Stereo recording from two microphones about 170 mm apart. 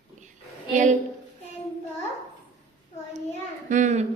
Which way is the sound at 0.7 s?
45° right (ahead or behind).